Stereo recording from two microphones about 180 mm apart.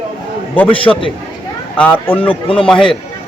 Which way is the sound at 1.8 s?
10° left (ahead or behind).